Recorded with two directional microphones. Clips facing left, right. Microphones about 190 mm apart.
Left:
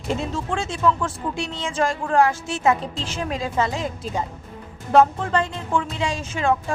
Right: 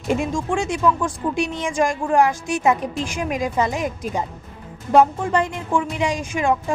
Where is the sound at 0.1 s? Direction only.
15° right (ahead or behind).